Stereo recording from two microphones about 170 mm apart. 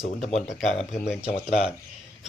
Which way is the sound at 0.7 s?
Centre (ahead or behind).